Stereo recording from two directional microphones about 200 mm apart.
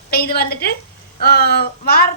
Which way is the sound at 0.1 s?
50° left (ahead or behind).